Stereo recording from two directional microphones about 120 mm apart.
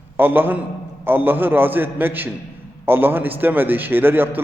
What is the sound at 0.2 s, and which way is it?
A man's voice, 15° right (ahead or behind).